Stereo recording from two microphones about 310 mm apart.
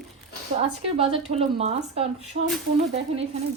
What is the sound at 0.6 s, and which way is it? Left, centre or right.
A woman's voice, centre.